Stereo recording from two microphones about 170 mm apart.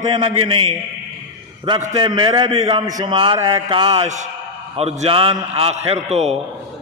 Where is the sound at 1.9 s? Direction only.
30° right (ahead or behind).